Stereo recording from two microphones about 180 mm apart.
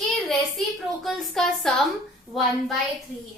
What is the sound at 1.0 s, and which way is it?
Speech, 5° left (ahead or behind).